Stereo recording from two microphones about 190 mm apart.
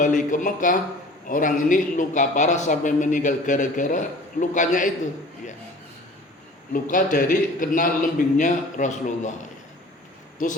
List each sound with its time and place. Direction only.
0.0 s a man's voice: 40° left (ahead or behind)
6.9 s a man's voice: 45° left (ahead or behind)